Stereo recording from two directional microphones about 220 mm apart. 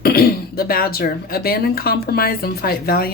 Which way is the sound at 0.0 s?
45° left (ahead or behind).